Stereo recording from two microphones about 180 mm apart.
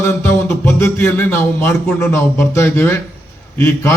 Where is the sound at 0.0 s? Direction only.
15° left (ahead or behind).